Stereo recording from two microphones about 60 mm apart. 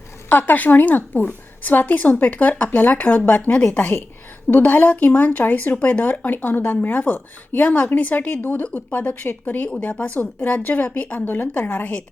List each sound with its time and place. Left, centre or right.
0.3 s a woman's voice: left